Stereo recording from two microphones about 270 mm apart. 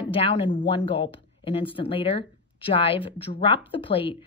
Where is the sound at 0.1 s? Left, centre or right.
Centre.